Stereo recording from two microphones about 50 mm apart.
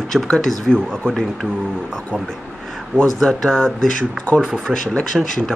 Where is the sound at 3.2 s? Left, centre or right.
Centre.